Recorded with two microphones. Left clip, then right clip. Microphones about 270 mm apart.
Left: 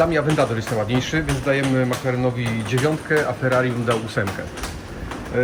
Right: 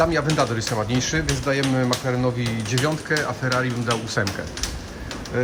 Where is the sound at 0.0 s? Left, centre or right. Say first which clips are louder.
Left 2 dB; centre.